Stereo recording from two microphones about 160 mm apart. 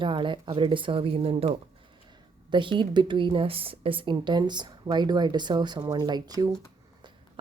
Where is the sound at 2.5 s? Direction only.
30° right (ahead or behind).